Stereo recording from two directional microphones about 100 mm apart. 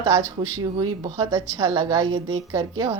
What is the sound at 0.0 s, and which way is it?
A woman's voice, 35° right (ahead or behind).